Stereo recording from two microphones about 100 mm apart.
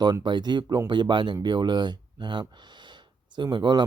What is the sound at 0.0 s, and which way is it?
Speech, 45° right (ahead or behind).